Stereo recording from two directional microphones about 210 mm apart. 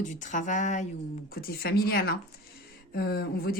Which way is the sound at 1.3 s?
45° left (ahead or behind).